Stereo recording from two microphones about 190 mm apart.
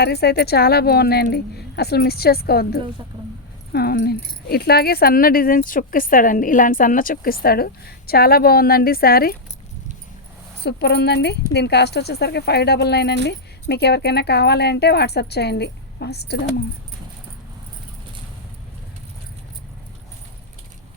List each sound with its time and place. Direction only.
0.0 s speech: 55° left (ahead or behind)
10.6 s speech: 60° left (ahead or behind)